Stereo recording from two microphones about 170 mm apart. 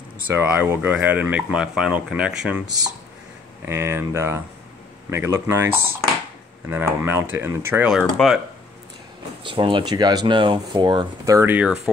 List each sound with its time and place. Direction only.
0.3 s speech: 15° right (ahead or behind)
3.6 s speech: 15° right (ahead or behind)
6.7 s speech: 15° right (ahead or behind)
8.0 s speech: centre (ahead or behind)
9.4 s speech: 30° right (ahead or behind); by 11.9 s 5° right (ahead or behind)